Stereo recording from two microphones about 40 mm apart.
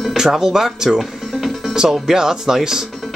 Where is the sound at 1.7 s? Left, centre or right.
Centre.